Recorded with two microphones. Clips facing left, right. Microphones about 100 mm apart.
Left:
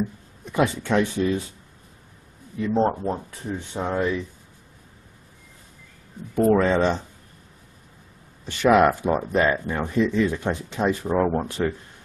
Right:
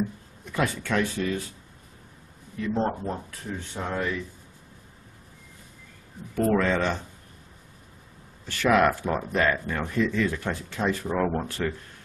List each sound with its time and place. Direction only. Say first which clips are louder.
0.5 s speech: left 5 dB; 20° left (ahead or behind)
2.7 s speech: left 5 dB; 20° left (ahead or behind)
6.3 s speech: left 5 dB; 20° left (ahead or behind)
8.5 s speech: left 4 dB; 20° left (ahead or behind)